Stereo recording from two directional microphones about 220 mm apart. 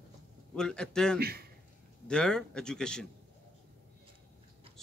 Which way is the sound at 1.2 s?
45° right (ahead or behind).